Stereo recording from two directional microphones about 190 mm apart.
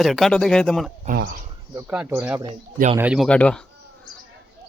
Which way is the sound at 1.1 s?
55° right (ahead or behind).